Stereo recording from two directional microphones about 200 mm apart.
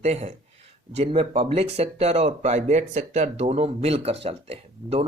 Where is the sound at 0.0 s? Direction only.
35° right (ahead or behind).